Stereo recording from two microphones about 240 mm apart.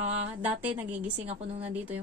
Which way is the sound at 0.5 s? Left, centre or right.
Centre.